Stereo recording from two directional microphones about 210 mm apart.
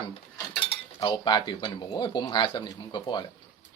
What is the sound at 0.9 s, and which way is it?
Speech, 20° left (ahead or behind).